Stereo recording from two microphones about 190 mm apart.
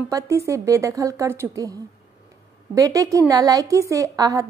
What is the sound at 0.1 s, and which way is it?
A woman's voice, 20° right (ahead or behind).